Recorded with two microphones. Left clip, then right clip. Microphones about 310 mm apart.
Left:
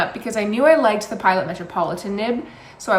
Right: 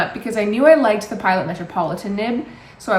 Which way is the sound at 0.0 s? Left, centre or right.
Centre.